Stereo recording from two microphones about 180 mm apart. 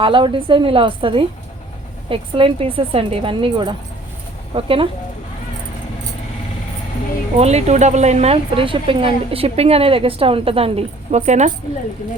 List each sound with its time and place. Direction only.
0.0 s a woman's voice: 30° right (ahead or behind)
7.3 s speech: 35° right (ahead or behind)